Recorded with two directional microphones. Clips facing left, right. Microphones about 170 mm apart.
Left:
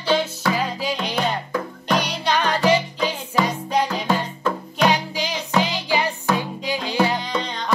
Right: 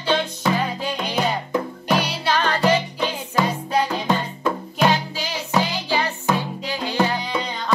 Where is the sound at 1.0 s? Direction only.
10° right (ahead or behind).